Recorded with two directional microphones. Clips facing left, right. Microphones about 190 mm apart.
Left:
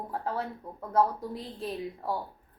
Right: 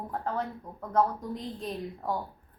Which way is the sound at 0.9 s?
5° left (ahead or behind).